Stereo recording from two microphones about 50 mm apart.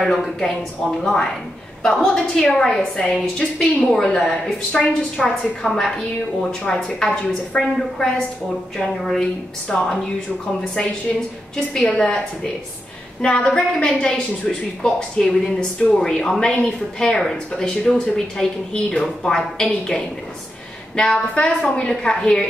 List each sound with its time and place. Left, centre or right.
0.0 s a woman's voice: centre
4.7 s a woman's voice: centre
5.6 s a woman's voice: centre
11.7 s a woman's voice: centre
13.2 s a woman's voice: centre